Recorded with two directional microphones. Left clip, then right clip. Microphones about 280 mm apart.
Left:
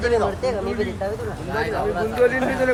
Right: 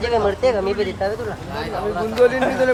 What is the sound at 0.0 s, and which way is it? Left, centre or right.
Speech, right.